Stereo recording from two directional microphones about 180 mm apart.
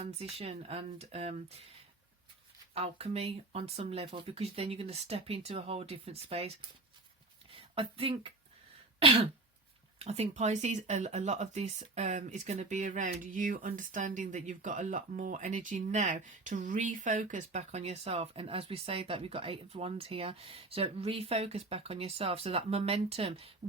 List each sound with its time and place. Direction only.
0.0 s speech: 35° right (ahead or behind)
2.7 s speech: 35° right (ahead or behind)
9.0 s throat clearing: 30° right (ahead or behind)
10.0 s speech: 35° right (ahead or behind)